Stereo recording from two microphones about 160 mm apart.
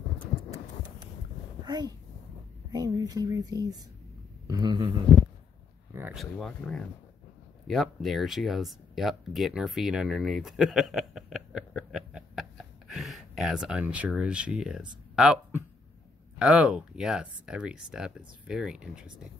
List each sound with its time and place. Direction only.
1.6 s speech: 25° right (ahead or behind)
6.1 s speech: 5° left (ahead or behind)